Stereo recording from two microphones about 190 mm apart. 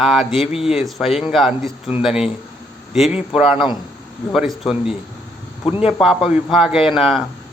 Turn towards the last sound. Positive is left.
turn(degrees=0)  # may be behind; listen again after turning